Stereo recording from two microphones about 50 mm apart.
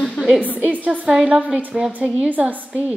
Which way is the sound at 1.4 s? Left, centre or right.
Right.